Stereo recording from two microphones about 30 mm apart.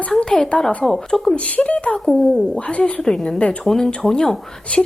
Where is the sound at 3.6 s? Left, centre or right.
Centre.